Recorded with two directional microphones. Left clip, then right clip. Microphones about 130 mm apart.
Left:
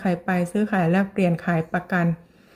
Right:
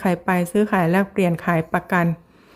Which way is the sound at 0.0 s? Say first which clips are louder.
Right 4 dB; 30° right (ahead or behind).